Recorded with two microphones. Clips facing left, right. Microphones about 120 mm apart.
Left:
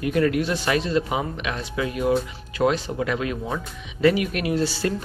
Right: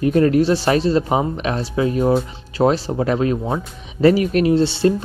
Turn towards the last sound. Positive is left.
turn(degrees=-25)  # may be behind; listen again after turning